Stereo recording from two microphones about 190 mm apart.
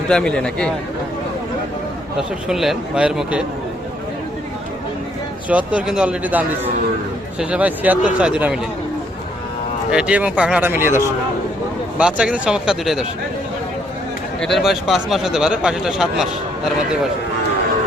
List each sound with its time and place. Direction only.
0.1 s speech: 5° left (ahead or behind)
2.1 s speech: centre (ahead or behind)
5.5 s speech: 5° right (ahead or behind)
9.9 s speech: 5° right (ahead or behind)
14.4 s speech: centre (ahead or behind)